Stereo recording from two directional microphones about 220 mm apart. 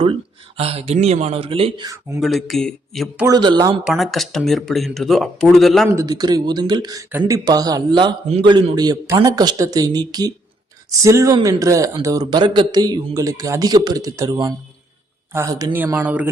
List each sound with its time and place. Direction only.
0.0 s speech: 25° right (ahead or behind)
2.2 s speech: centre (ahead or behind)
3.2 s speech: 20° right (ahead or behind)
3.8 s speech: centre (ahead or behind)
6.0 s speech: 15° right (ahead or behind)